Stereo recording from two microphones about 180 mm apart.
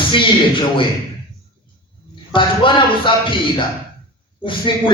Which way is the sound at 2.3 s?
25° left (ahead or behind).